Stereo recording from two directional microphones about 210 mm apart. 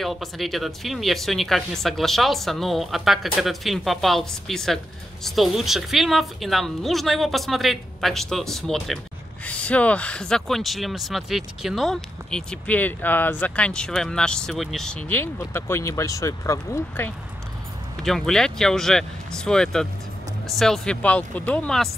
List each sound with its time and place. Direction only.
0.0 s speech: centre (ahead or behind)